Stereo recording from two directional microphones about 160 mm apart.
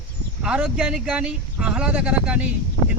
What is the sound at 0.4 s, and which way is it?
Speech, 5° right (ahead or behind).